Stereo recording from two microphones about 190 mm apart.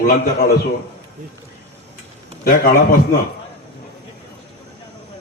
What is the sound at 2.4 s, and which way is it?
Speech, 50° left (ahead or behind).